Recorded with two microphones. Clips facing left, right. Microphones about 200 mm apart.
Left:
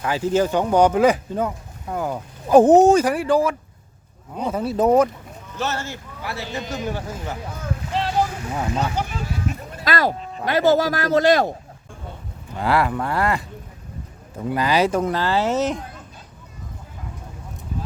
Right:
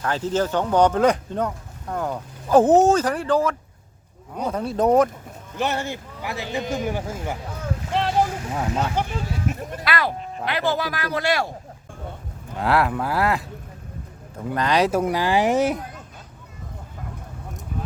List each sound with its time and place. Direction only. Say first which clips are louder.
0.0 s speech: left 3 dB; 10° left (ahead or behind)
5.5 s speech: right 2 dB; 15° right (ahead or behind)
8.4 s speech: left 1 dB; centre (ahead or behind)
9.8 s speech: left 4 dB; 40° left (ahead or behind)
12.5 s speech: even; centre (ahead or behind)
14.5 s speech: left 1 dB; 5° left (ahead or behind); by 15.8 s 10° right (ahead or behind)